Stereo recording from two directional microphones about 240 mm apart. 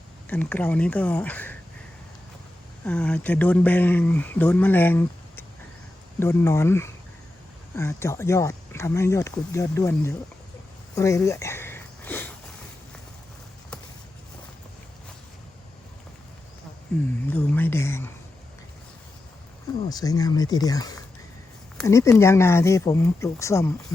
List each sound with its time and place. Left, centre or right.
0.3 s speech: centre
2.8 s speech: centre
10.9 s sniff: centre
17.2 s speech: centre
19.9 s speech: centre